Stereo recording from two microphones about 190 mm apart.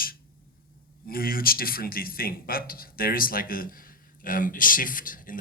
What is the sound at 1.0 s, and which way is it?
Speech, 50° left (ahead or behind).